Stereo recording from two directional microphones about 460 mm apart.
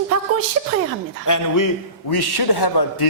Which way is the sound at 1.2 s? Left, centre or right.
Left.